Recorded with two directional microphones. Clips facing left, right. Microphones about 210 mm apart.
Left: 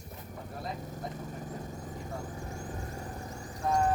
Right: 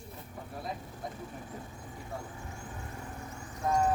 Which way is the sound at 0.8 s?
40° left (ahead or behind).